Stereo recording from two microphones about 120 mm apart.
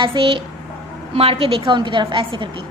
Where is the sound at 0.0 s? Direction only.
45° right (ahead or behind).